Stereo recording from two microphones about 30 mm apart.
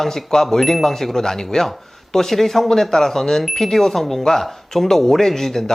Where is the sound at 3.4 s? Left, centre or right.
Centre.